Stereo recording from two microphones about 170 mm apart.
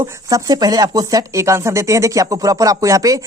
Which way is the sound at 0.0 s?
20° right (ahead or behind).